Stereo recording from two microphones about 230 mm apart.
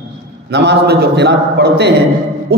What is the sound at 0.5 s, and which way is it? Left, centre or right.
A man's voice, right.